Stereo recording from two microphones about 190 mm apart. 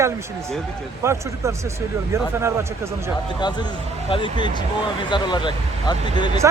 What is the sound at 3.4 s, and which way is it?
Speech, 20° left (ahead or behind).